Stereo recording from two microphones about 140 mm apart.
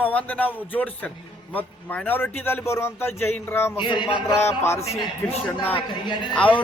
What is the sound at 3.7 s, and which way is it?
Speech, 35° left (ahead or behind).